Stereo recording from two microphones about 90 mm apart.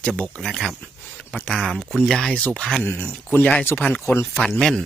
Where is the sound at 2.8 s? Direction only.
25° left (ahead or behind).